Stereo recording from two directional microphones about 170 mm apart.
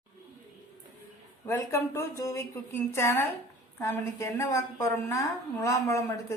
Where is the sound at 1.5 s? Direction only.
15° left (ahead or behind).